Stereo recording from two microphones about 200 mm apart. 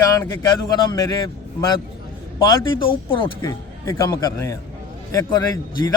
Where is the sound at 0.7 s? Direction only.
20° left (ahead or behind).